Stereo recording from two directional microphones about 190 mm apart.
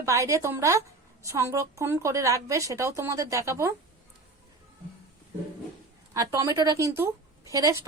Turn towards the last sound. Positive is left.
turn(degrees=-20)  # may be behind; listen again after turning